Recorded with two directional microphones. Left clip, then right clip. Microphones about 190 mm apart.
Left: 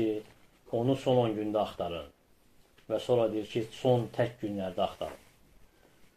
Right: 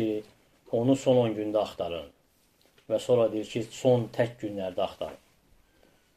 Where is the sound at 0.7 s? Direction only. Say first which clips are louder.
Right 4 dB; 20° right (ahead or behind).